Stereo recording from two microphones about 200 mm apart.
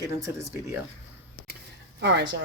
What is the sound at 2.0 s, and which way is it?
Speech, 60° right (ahead or behind).